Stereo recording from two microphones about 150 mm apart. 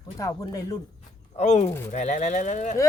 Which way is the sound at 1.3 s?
50° left (ahead or behind).